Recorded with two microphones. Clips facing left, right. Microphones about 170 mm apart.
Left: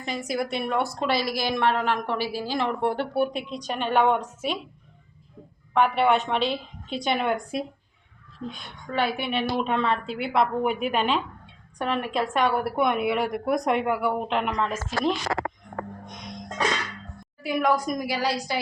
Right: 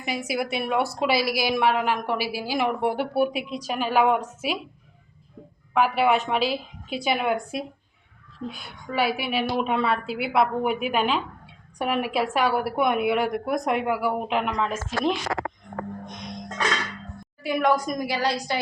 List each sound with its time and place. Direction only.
0.0 s a woman's voice: 10° right (ahead or behind)
5.7 s a woman's voice: 5° right (ahead or behind)
16.0 s music: 10° left (ahead or behind)
17.4 s a woman's voice: centre (ahead or behind)